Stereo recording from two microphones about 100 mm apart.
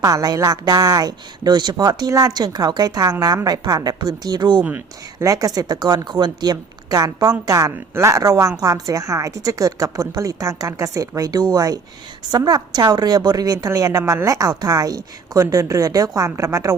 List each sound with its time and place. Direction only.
0.0 s speech: 40° right (ahead or behind)
5.2 s speech: 35° right (ahead or behind)